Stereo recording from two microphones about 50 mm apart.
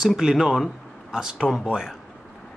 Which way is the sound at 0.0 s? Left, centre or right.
Centre.